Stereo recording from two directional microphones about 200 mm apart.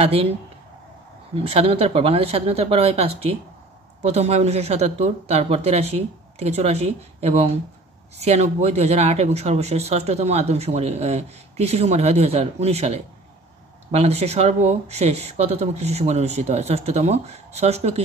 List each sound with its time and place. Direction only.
0.0 s speech: 30° right (ahead or behind)
1.3 s speech: 30° right (ahead or behind)